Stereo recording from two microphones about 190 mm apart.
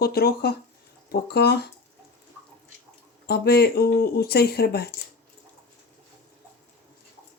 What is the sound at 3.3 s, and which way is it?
Speech, 55° left (ahead or behind).